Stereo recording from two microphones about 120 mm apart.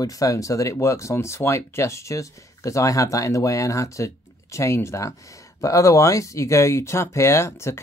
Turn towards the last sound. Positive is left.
turn(degrees=20)  # may be behind; listen again after turning